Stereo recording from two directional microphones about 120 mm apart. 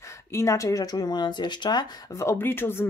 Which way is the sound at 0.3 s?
25° left (ahead or behind).